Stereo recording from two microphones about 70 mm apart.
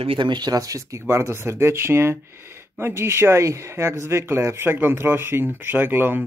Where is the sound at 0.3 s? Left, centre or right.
Right.